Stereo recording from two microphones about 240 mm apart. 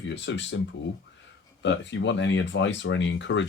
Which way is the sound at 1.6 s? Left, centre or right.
Left.